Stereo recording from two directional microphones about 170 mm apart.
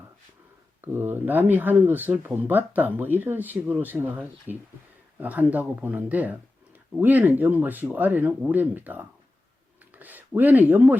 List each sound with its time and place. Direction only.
0.8 s speech: 10° right (ahead or behind)